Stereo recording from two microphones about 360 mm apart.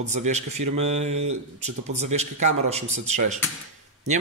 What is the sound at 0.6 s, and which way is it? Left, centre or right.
Mantra, right.